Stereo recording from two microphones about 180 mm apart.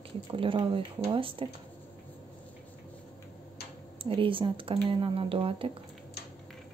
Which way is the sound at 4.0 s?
30° right (ahead or behind).